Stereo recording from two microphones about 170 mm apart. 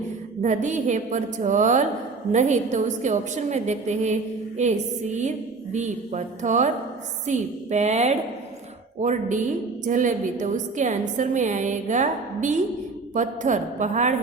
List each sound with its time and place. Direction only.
0.4 s a woman's voice: 45° right (ahead or behind)
5.7 s a woman's voice: 45° right (ahead or behind)